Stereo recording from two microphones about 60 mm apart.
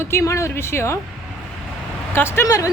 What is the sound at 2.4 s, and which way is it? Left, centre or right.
Speech, left.